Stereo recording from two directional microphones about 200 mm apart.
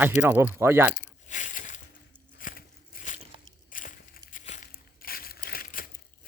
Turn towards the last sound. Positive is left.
turn(degrees=45)  # may be behind; listen again after turning